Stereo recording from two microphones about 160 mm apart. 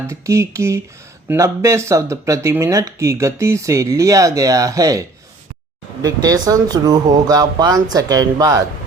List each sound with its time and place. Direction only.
0.1 s speech: 20° right (ahead or behind)